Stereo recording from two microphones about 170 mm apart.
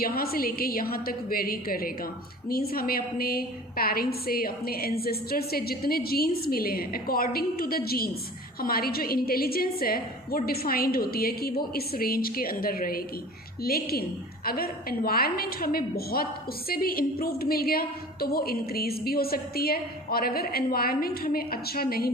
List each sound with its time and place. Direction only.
0.0 s a woman's voice: 60° left (ahead or behind)